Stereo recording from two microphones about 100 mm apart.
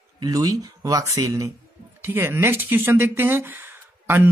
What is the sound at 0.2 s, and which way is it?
Speech, 40° right (ahead or behind).